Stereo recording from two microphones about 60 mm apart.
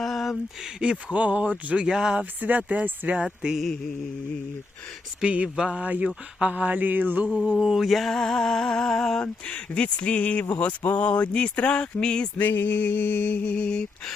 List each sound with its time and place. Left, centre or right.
0.0 s a sound: centre
0.8 s speech: centre
1.9 s speech: centre
2.4 s speech: right
3.4 s speech: centre
5.2 s speech: centre
7.6 s a sound: centre
9.2 s speech: centre
12.4 s speech: left; by 14.1 s centre